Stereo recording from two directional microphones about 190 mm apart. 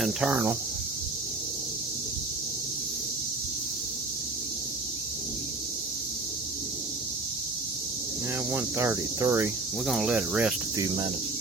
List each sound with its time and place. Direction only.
0.0 s speech: 5° right (ahead or behind)
8.5 s speech: 15° right (ahead or behind)
9.8 s speech: centre (ahead or behind)
10.8 s speech: 25° right (ahead or behind)